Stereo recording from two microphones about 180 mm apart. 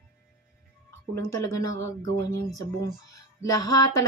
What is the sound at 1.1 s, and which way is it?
Speech, 20° left (ahead or behind).